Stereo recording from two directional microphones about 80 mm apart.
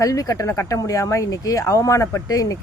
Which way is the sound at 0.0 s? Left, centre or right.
Left.